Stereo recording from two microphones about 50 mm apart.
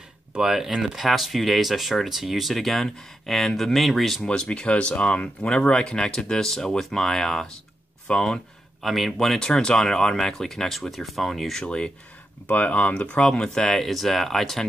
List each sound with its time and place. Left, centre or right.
0.4 s speech: centre
4.2 s speech: centre
8.8 s speech: centre
9.4 s speech: centre
11.6 s speech: centre
12.4 s speech: left
13.3 s speech: centre